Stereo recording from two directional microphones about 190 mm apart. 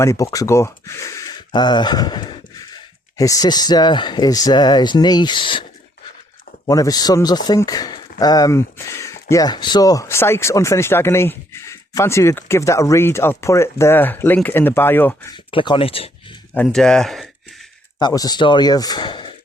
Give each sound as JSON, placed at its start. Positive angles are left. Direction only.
{"t": 0.0, "sound": "speech", "side_deg": 15}
{"t": 6.7, "sound": "speech", "side_deg": 20}
{"t": 15.5, "sound": "speech", "side_deg": 25}
{"t": 16.6, "sound": "speech", "side_deg": 0}
{"t": 18.0, "sound": "speech", "side_deg": 20}